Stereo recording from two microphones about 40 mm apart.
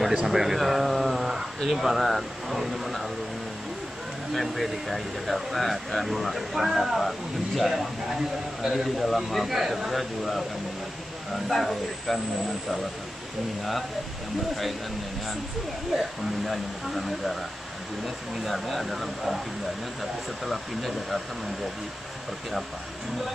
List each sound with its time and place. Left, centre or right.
0.2 s speech: centre
4.3 s speech: centre
9.0 s speech: centre
11.4 s speech: centre
15.9 s speech: centre